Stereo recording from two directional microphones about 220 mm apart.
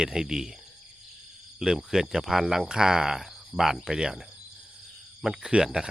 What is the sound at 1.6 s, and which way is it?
Speech, 5° right (ahead or behind).